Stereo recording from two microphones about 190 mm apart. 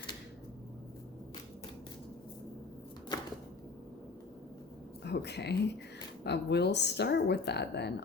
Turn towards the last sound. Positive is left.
turn(degrees=60)  # may be behind; listen again after turning